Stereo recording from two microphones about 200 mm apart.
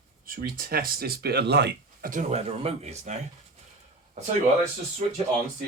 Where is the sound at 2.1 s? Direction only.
35° right (ahead or behind).